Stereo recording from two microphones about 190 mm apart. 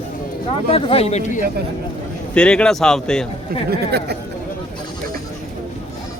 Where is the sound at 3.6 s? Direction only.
60° right (ahead or behind).